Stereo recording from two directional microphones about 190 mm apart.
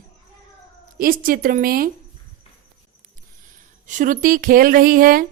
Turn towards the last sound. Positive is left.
turn(degrees=-50)  # may be behind; listen again after turning